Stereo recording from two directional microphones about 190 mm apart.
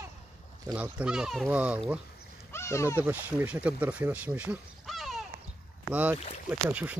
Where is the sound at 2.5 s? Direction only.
15° left (ahead or behind).